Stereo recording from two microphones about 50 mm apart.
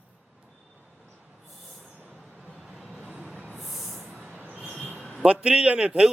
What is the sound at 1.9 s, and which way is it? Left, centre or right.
Vehicle, right.